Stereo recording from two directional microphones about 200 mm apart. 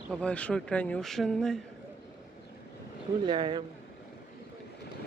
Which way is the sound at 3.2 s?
20° right (ahead or behind).